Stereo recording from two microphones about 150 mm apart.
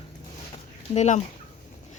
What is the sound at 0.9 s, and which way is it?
Speech, 50° left (ahead or behind).